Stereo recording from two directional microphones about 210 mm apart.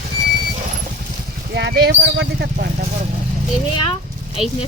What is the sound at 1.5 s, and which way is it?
Speech, 50° right (ahead or behind).